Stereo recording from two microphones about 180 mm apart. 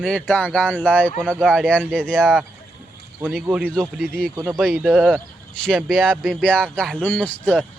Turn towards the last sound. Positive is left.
turn(degrees=5)  # may be behind; listen again after turning